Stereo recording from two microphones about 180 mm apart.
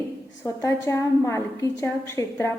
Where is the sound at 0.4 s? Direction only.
15° left (ahead or behind).